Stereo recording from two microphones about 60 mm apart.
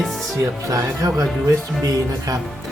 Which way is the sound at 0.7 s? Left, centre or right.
Right.